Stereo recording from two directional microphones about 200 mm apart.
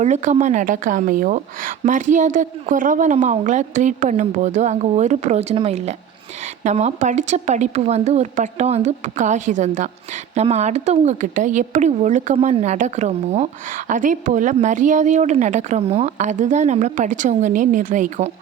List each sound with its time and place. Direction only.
0.0 s a woman's voice: 35° right (ahead or behind)